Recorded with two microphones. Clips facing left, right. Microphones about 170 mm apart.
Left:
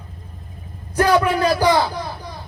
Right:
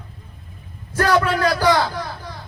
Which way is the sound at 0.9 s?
15° left (ahead or behind).